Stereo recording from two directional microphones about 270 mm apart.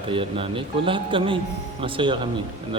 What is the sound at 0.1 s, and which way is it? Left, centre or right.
Speech, centre.